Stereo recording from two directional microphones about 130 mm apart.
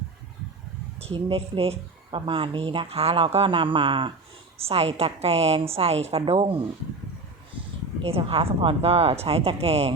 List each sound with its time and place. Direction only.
0.9 s a woman's voice: 50° right (ahead or behind)
8.0 s a woman's voice: 45° right (ahead or behind)